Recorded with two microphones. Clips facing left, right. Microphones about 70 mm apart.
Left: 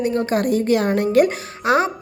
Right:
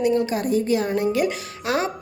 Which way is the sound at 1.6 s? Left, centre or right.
Left.